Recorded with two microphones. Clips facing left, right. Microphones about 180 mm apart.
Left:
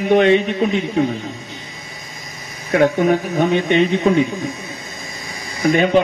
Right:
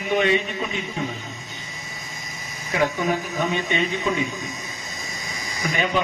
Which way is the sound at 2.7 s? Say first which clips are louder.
Left 8 dB; 60° left (ahead or behind).